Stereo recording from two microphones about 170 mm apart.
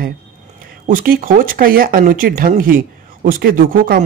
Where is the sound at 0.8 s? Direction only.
55° right (ahead or behind).